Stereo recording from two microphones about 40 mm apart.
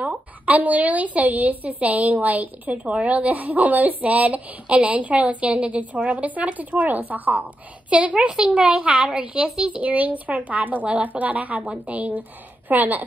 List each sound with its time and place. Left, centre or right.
0.0 s a woman's voice: right
9.8 s a woman's voice: right